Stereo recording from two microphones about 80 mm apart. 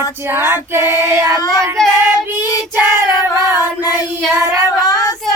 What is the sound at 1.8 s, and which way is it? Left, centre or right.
Child singing, centre.